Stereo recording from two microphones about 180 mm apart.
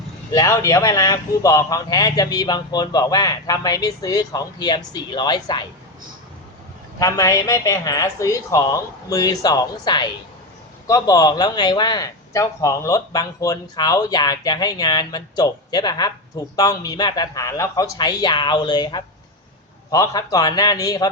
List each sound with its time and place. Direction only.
0.3 s speech: 20° left (ahead or behind)
7.0 s speech: 20° left (ahead or behind)